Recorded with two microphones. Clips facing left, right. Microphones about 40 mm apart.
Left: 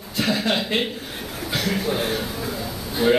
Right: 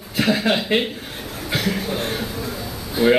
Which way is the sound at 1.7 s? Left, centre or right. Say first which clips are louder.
Left 1 dB; centre.